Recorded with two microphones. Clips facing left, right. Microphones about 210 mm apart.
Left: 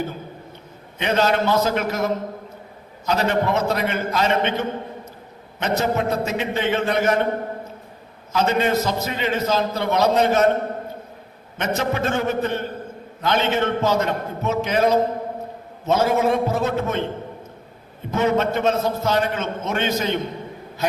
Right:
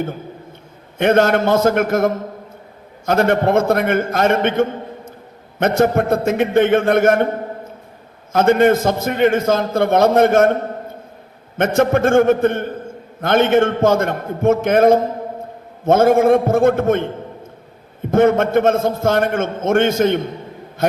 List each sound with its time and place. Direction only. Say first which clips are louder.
0.9 s a man's voice: right 6 dB; 55° right (ahead or behind)
18.1 s a man's voice: right 7 dB; 50° right (ahead or behind)